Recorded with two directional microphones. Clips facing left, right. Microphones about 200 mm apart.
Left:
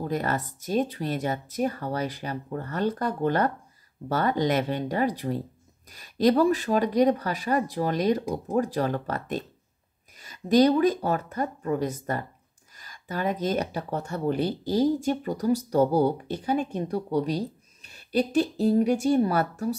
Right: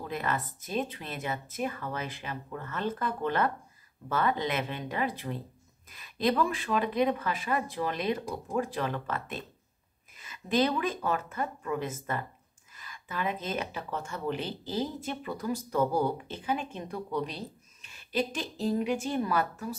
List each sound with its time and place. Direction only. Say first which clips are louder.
0.0 s speech: left 5 dB; 40° left (ahead or behind)